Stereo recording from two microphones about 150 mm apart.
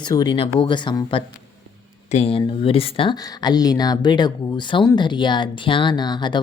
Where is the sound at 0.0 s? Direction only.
30° left (ahead or behind).